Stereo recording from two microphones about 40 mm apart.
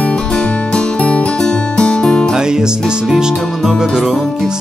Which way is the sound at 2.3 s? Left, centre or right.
Centre.